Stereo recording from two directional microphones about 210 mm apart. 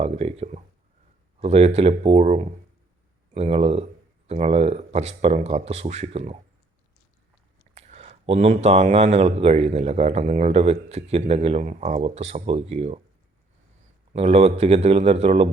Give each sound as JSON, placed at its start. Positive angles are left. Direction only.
{"t": 0.0, "sound": "speech", "side_deg": -30}
{"t": 7.8, "sound": "speech", "side_deg": -30}
{"t": 14.1, "sound": "speech", "side_deg": -30}